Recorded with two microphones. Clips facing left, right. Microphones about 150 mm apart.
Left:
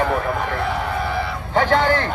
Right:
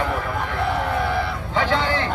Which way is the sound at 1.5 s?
50° left (ahead or behind).